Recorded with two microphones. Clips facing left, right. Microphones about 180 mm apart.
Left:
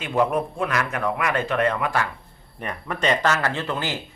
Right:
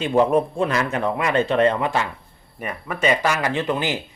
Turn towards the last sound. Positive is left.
turn(degrees=-15)  # may be behind; listen again after turning